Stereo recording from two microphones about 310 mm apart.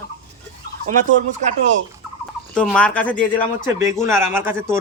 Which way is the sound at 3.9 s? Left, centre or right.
Centre.